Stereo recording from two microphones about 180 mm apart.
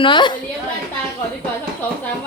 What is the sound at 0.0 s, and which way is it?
Speech, 25° left (ahead or behind).